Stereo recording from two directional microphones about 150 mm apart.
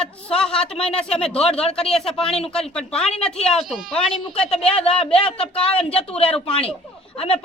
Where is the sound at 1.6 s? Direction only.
40° left (ahead or behind).